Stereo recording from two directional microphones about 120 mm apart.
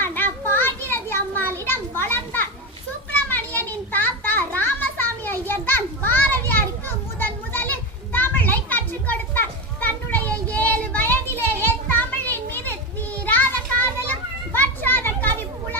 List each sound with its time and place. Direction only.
0.0 s children playing: 20° left (ahead or behind)
11.6 s a sound: 15° left (ahead or behind)
12.5 s children playing: 15° left (ahead or behind)